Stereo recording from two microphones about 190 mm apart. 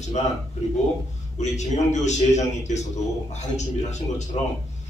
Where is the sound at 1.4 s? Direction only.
35° left (ahead or behind).